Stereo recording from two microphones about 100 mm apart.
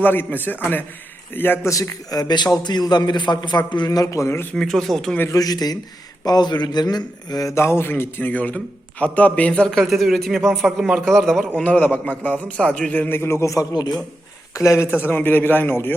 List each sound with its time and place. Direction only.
0.0 s a man's voice: 20° left (ahead or behind)
1.7 s a man's voice: 35° left (ahead or behind)
4.5 s a man's voice: centre (ahead or behind)
5.3 s a man's voice: 40° left (ahead or behind); by 11.4 s 5° left (ahead or behind)
11.5 s a man's voice: 15° left (ahead or behind); by 14.0 s 45° left (ahead or behind)
14.5 s a man's voice: 30° left (ahead or behind)